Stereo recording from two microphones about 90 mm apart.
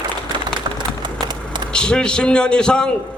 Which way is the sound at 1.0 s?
55° right (ahead or behind).